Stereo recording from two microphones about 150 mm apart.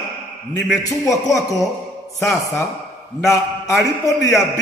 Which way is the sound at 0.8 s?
20° left (ahead or behind).